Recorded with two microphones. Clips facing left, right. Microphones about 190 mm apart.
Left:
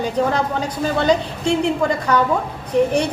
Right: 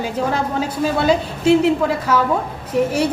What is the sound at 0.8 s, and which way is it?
A woman's voice, 5° right (ahead or behind).